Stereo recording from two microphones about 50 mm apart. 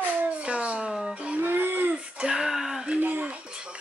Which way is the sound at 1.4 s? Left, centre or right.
Right.